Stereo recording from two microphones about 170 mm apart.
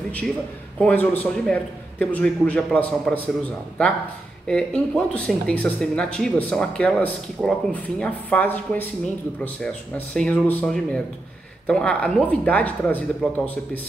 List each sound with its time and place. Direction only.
0.7 s speech: 10° left (ahead or behind)
4.5 s speech: 5° left (ahead or behind)